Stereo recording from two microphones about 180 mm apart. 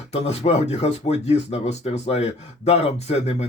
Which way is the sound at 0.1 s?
35° left (ahead or behind).